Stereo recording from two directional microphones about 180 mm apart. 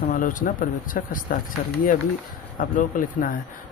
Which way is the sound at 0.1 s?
50° left (ahead or behind).